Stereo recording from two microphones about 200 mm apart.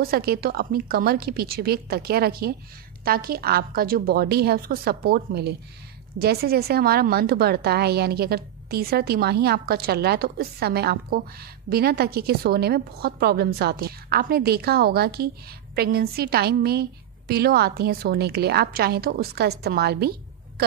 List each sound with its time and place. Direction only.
0.0 s a woman's voice: 50° right (ahead or behind)